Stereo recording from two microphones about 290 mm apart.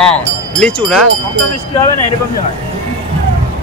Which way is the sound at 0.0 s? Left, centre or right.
Centre.